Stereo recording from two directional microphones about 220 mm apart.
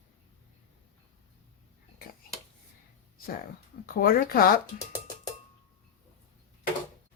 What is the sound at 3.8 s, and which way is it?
Speech, 40° left (ahead or behind).